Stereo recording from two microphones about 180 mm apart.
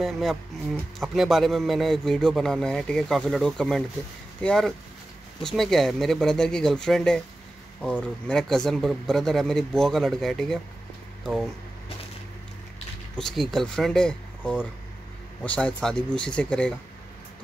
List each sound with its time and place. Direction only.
0.0 s a man's voice: centre (ahead or behind)
13.1 s a man's voice: centre (ahead or behind)